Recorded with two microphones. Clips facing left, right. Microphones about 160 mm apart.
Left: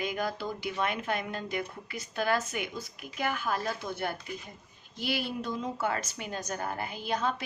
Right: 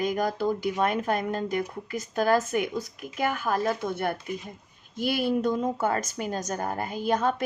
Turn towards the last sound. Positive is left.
turn(degrees=-50)  # may be behind; listen again after turning